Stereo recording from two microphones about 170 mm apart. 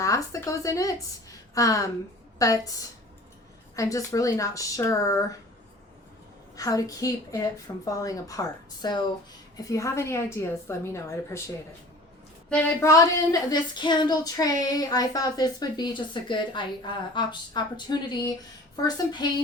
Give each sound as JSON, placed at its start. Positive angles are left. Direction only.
{"t": 0.0, "sound": "speech", "side_deg": 20}
{"t": 3.8, "sound": "speech", "side_deg": 20}
{"t": 6.6, "sound": "a woman's voice", "side_deg": 20}
{"t": 12.8, "sound": "speech", "side_deg": 20}